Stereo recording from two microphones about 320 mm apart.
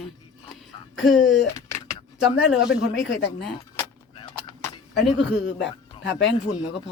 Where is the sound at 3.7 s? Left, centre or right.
Centre.